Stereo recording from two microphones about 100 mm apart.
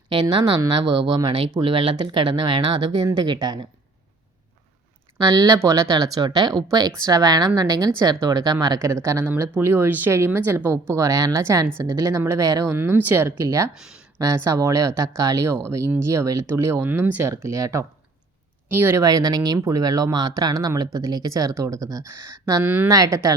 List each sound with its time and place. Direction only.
0.1 s speech: 50° right (ahead or behind)
5.4 s speech: 30° right (ahead or behind)
8.8 s speech: 30° right (ahead or behind)
12.7 s speech: 20° right (ahead or behind)
13.7 s speech: 5° right (ahead or behind)
14.2 s speech: 35° right (ahead or behind)
17.2 s speech: 30° right (ahead or behind)
19.0 s speech: 40° right (ahead or behind)
22.6 s speech: 20° right (ahead or behind)
22.9 s speech: 35° right (ahead or behind)